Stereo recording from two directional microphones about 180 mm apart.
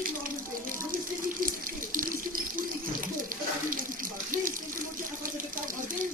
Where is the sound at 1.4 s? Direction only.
50° right (ahead or behind).